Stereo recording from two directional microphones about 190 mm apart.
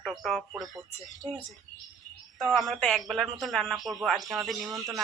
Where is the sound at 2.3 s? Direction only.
Centre (ahead or behind).